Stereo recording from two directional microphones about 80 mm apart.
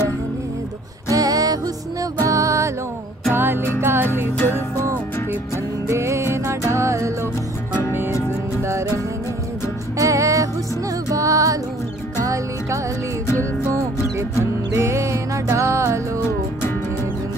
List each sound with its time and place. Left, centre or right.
1.1 s music: right
3.3 s music: right
5.9 s music: right
9.9 s music: right
13.4 s music: right